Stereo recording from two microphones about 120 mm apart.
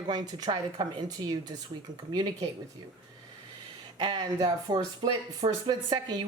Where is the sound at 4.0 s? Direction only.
40° right (ahead or behind).